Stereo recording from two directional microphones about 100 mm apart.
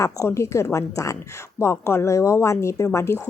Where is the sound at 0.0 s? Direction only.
30° left (ahead or behind).